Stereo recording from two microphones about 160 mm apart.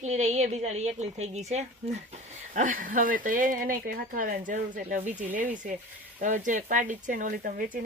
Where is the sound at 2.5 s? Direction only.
55° right (ahead or behind).